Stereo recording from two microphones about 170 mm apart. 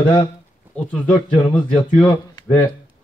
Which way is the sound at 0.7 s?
10° left (ahead or behind).